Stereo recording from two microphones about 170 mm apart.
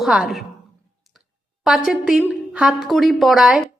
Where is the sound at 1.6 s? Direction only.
Centre (ahead or behind).